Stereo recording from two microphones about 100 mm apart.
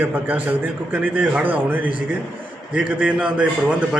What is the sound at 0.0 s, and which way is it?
Speech, 15° right (ahead or behind).